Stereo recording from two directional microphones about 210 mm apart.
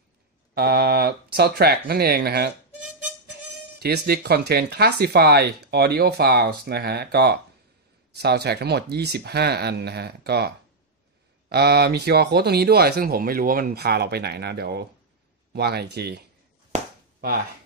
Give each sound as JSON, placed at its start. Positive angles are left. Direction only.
{"t": 0.6, "sound": "speech", "side_deg": -50}
{"t": 3.8, "sound": "speech", "side_deg": -50}